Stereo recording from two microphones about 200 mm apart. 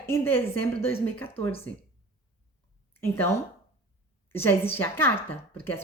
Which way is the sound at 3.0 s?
15° left (ahead or behind).